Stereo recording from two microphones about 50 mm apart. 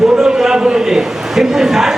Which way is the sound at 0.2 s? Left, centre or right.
Centre.